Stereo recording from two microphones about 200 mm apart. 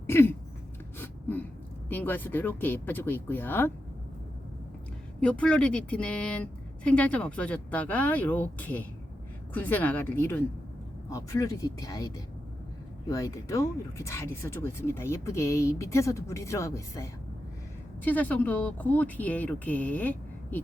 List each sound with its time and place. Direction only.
0.1 s a sound: 10° left (ahead or behind)
0.9 s gasp: 10° left (ahead or behind)
1.9 s speech: 10° left (ahead or behind)
5.2 s speech: 5° left (ahead or behind)